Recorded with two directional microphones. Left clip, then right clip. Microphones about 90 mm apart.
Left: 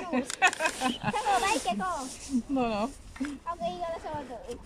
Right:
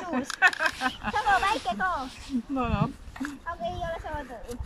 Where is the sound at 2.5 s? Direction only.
50° left (ahead or behind).